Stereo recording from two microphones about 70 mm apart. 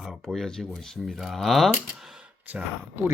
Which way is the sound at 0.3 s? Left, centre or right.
Centre.